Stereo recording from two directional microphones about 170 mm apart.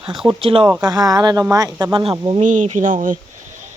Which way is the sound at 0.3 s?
30° right (ahead or behind).